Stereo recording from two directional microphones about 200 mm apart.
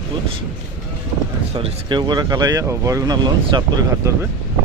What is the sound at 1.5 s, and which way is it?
Speech, 20° right (ahead or behind).